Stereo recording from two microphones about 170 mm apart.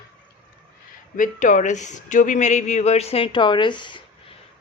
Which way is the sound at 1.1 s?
50° left (ahead or behind).